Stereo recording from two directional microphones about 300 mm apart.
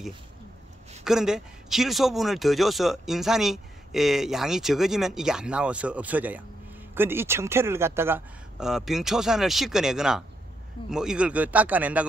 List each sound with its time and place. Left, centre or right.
1.0 s a man's voice: centre